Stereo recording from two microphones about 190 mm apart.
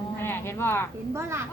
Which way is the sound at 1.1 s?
15° right (ahead or behind).